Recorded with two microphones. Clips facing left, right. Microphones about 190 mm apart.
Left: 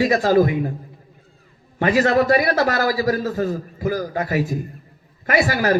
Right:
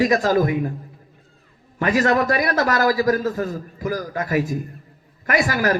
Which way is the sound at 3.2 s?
40° left (ahead or behind).